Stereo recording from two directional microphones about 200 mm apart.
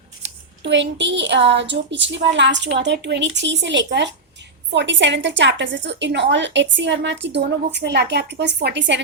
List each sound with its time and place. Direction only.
0.6 s a woman's voice: 65° right (ahead or behind)